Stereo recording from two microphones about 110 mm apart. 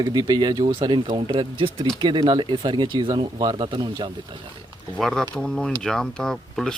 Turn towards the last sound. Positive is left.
turn(degrees=5)  # may be behind; listen again after turning